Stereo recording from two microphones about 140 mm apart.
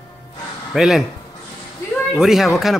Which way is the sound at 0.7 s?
Centre (ahead or behind).